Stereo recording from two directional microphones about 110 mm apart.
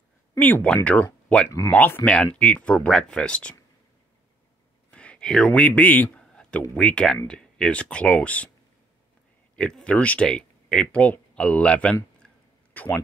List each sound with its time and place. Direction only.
0.4 s speech: 15° left (ahead or behind)
4.9 s a sound: 10° left (ahead or behind)
6.7 s speech: 10° left (ahead or behind)
9.6 s speech: 5° left (ahead or behind)